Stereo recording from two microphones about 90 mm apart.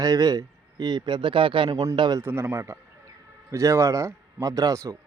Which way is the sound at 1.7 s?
40° right (ahead or behind).